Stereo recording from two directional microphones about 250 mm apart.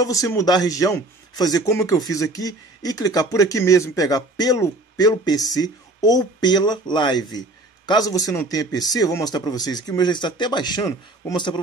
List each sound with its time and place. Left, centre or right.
0.0 s speech: centre